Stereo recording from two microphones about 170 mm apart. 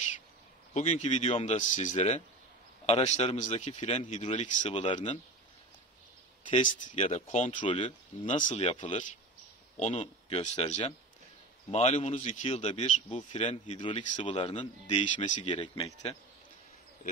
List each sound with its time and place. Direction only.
0.7 s speech: 40° left (ahead or behind)
6.6 s speech: 50° left (ahead or behind)
7.5 s speech: 30° left (ahead or behind)
13.8 s speech: 30° left (ahead or behind)
15.0 s speech: 45° left (ahead or behind)
15.4 s speech: 30° left (ahead or behind)